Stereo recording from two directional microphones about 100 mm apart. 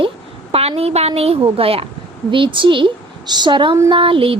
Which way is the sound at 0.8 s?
90° right.